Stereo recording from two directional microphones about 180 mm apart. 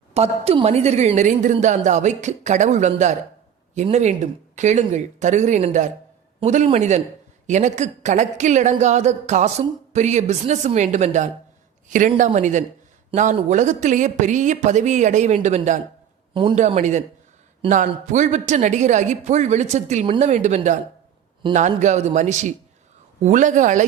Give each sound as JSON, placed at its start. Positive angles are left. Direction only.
{"t": 0.1, "sound": "speech", "side_deg": -35}
{"t": 16.3, "sound": "speech", "side_deg": -30}